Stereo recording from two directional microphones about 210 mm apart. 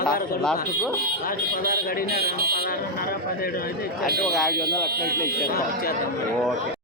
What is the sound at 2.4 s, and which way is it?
Speech, 45° right (ahead or behind).